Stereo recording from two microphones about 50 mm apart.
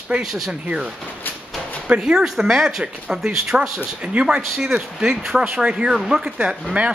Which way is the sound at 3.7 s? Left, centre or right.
Centre.